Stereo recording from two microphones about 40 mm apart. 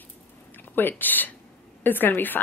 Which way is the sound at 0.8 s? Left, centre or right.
Left.